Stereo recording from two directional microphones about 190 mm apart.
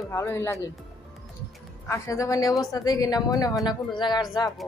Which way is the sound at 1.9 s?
15° left (ahead or behind).